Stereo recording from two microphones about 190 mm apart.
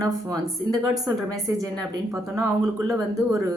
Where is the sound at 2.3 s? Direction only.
15° right (ahead or behind).